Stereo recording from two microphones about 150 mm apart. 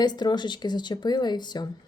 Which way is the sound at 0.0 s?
30° left (ahead or behind).